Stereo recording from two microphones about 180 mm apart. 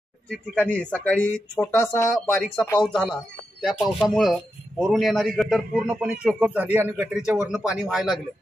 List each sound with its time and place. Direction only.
0.3 s speech: 5° left (ahead or behind)
2.8 s a man's voice: 5° left (ahead or behind)